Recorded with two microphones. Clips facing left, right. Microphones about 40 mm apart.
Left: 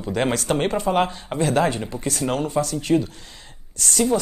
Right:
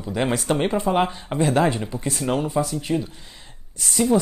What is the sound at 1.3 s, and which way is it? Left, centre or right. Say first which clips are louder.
Speech: right 1 dB; right.